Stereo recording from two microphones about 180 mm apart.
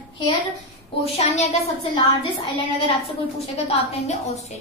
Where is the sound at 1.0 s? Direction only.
35° left (ahead or behind).